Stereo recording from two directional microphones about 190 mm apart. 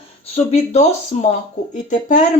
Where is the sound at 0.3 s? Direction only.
35° left (ahead or behind).